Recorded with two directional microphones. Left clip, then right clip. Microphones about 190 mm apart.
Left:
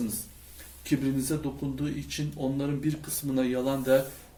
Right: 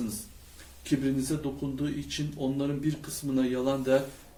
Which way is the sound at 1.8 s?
25° left (ahead or behind).